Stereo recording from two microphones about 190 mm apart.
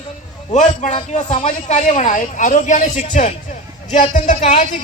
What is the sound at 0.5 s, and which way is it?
A man's voice, 40° left (ahead or behind).